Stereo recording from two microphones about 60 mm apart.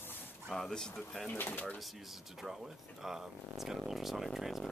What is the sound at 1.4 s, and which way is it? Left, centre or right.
Speech, left.